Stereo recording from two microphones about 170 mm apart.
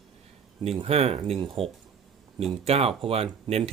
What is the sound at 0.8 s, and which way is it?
Speech, 35° right (ahead or behind).